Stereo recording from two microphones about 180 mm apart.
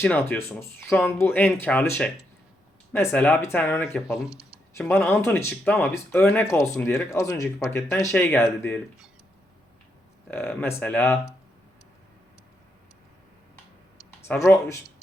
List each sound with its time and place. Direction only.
0.0 s speech: 10° left (ahead or behind)
10.2 s speech: 10° left (ahead or behind)
14.3 s speech: 15° left (ahead or behind)